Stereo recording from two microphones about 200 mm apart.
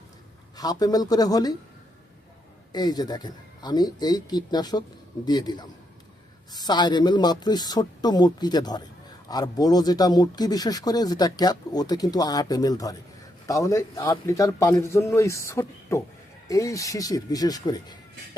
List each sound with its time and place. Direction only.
0.5 s speech: 20° left (ahead or behind)
2.7 s a man's voice: 20° left (ahead or behind)